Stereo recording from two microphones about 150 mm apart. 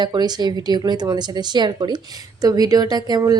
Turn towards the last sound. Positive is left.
turn(degrees=-25)  # may be behind; listen again after turning